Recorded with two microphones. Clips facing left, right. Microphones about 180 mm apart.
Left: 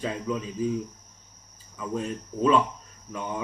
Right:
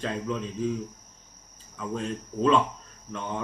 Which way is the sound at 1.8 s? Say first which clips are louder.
Left 1 dB; 5° left (ahead or behind).